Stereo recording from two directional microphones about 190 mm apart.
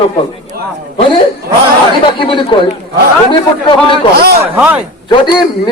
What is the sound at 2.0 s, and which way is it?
Speech, 25° left (ahead or behind).